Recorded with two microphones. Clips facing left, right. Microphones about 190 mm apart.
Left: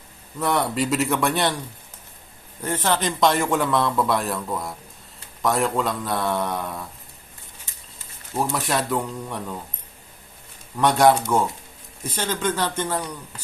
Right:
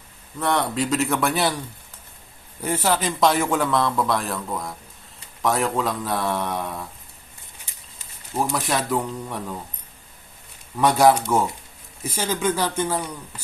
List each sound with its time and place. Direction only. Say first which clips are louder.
0.3 s a man's voice: even; centre (ahead or behind)
2.6 s a man's voice: right 1 dB; 5° right (ahead or behind)
8.5 s a man's voice: even; centre (ahead or behind)
10.8 s a man's voice: even; 5° right (ahead or behind)